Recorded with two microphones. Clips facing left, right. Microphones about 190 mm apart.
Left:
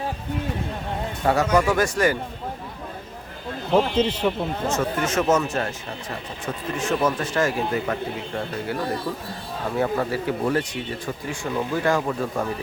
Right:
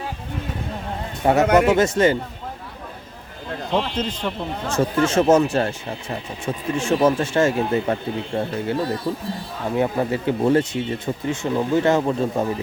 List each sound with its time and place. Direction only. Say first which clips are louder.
1.2 s speech: right 4 dB; 20° right (ahead or behind)
3.8 s a man's voice: left 5 dB; 10° left (ahead or behind)
4.8 s speech: right 8 dB; 30° right (ahead or behind)